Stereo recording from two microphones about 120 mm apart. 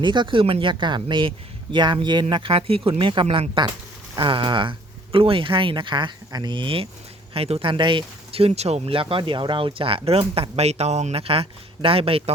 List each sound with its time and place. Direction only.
0.0 s speech: 40° right (ahead or behind)
2.3 s speech: 50° right (ahead or behind)
7.3 s speech: 55° right (ahead or behind)
10.6 s speech: 65° right (ahead or behind)